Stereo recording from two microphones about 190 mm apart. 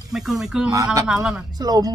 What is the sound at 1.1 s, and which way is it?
Speech, 5° right (ahead or behind).